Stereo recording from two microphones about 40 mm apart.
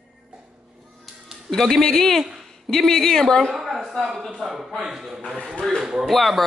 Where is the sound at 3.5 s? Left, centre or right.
Centre.